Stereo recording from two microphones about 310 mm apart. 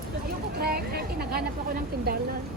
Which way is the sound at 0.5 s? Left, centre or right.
Right.